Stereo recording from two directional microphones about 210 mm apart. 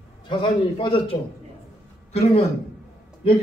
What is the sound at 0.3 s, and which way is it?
Speech, 25° left (ahead or behind).